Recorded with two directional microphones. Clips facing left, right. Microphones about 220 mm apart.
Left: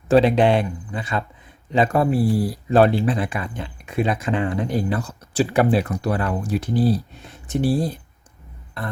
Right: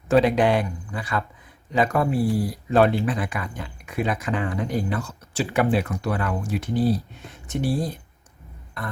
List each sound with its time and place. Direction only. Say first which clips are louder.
0.1 s speech: left 3 dB; 30° left (ahead or behind)